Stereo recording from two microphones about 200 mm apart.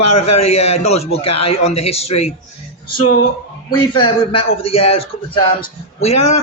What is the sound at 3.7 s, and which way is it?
A man's voice, 25° left (ahead or behind).